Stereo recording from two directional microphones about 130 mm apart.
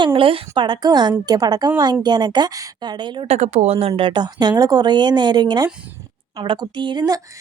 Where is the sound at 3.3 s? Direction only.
60° right (ahead or behind); by 7.2 s 30° right (ahead or behind).